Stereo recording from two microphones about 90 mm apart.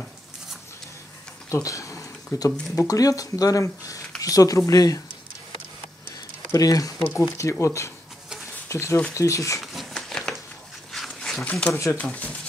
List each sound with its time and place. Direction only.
1.5 s a sound: 35° left (ahead or behind)
2.7 s speech: 35° left (ahead or behind)
6.5 s speech: 45° left (ahead or behind)
9.6 s crumpling: centre (ahead or behind)
10.9 s a sound: centre (ahead or behind)
11.7 s speech: 35° left (ahead or behind)
12.0 s speech: 15° left (ahead or behind)